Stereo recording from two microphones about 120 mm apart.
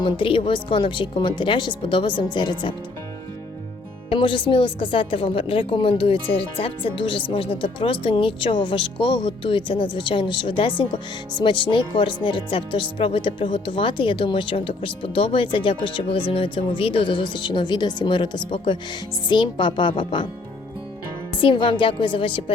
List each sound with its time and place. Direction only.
0.0 s a woman's voice: 45° left (ahead or behind)
4.1 s a woman's voice: 45° left (ahead or behind)
21.3 s a woman's voice: 45° left (ahead or behind)